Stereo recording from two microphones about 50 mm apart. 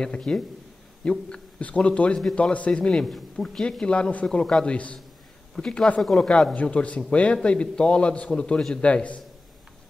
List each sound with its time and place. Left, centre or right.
0.0 s a man's voice: centre
6.5 s a man's voice: left